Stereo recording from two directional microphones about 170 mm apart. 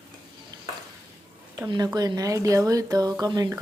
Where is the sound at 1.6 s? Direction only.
20° right (ahead or behind).